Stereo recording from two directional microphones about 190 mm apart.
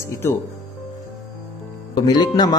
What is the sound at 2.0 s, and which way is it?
Speech, 20° left (ahead or behind).